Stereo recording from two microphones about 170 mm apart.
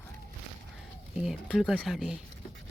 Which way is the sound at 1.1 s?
5° right (ahead or behind).